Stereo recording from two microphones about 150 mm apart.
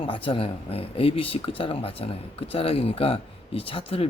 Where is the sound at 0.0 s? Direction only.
35° left (ahead or behind).